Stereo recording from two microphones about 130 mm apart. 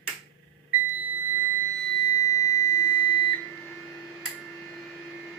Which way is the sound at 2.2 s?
25° left (ahead or behind).